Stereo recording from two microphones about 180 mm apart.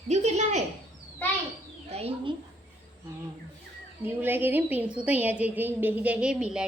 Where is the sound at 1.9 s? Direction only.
35° right (ahead or behind).